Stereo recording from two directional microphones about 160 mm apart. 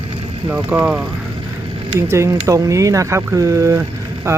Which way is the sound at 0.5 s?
10° right (ahead or behind).